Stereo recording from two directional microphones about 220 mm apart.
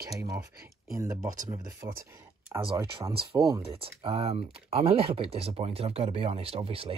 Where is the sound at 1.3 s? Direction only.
15° right (ahead or behind).